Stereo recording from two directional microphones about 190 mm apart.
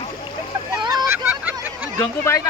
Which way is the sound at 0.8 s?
20° right (ahead or behind).